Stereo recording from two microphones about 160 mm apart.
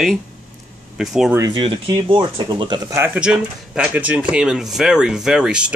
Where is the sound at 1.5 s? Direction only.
30° right (ahead or behind).